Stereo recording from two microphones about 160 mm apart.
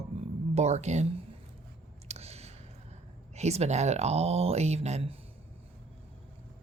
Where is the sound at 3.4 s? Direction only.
45° right (ahead or behind).